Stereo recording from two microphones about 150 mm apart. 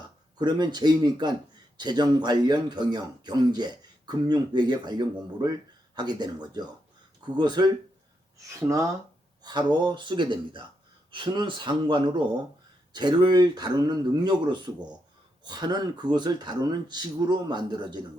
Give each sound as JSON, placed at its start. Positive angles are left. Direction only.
{"t": 0.3, "sound": "speech", "side_deg": -30}
{"t": 8.4, "sound": "speech", "side_deg": -20}